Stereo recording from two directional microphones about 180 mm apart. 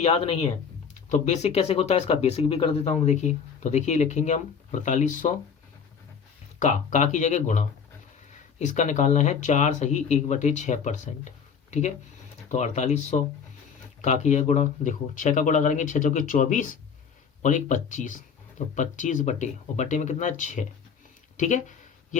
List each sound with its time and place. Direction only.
0.0 s speech: 35° left (ahead or behind)
6.6 s speech: 40° left (ahead or behind)
12.5 s speech: 40° left (ahead or behind)